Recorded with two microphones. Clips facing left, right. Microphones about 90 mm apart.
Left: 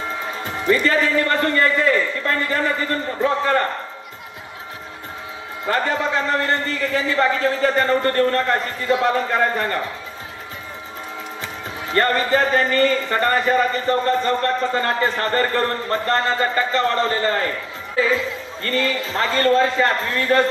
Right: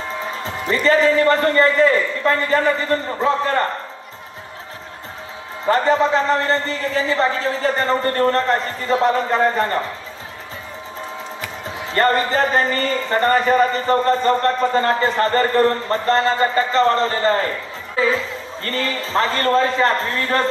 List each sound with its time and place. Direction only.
0.4 s speech: 30° right (ahead or behind)
5.7 s speech: 30° right (ahead or behind)
11.9 s speech: 30° right (ahead or behind)
18.6 s speech: 35° right (ahead or behind)